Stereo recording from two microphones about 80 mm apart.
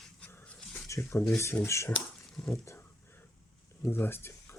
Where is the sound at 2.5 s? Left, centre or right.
Left.